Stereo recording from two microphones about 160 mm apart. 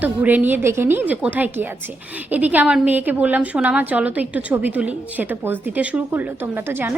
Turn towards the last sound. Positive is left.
turn(degrees=-15)  # may be behind; listen again after turning